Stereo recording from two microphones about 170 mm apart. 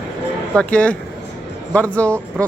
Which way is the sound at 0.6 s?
10° left (ahead or behind).